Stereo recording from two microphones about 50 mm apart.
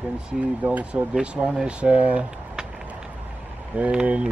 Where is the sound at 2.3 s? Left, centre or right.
Centre.